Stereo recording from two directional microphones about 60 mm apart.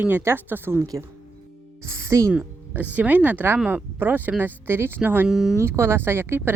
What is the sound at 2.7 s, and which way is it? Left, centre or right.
Speech, right.